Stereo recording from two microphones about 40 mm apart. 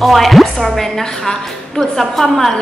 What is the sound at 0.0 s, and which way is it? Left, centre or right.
A woman's voice, centre.